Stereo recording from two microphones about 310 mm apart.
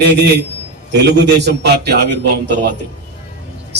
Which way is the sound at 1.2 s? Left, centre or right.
Right.